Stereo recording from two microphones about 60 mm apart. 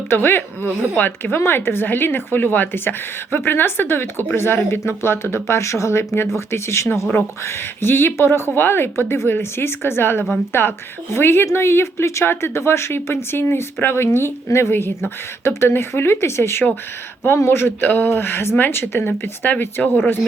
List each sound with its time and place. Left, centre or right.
0.1 s speech: left
17.7 s speech: left